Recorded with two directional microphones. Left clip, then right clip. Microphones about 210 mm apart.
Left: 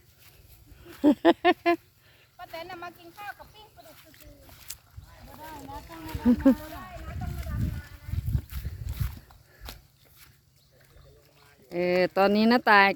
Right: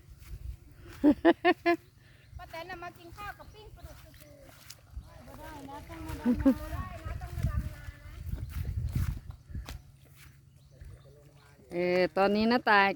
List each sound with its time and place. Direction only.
0.9 s speech: 10° left (ahead or behind)
2.4 s a sound: 15° right (ahead or behind)
4.7 s boat: 25° left (ahead or behind)
5.5 s speech: 5° left (ahead or behind)
6.7 s vehicle: 5° right (ahead or behind)
8.4 s a sound: 15° left (ahead or behind)
9.7 s walk: 15° left (ahead or behind)
11.7 s speech: 10° left (ahead or behind)